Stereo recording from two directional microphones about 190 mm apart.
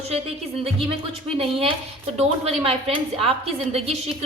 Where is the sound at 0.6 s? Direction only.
30° right (ahead or behind).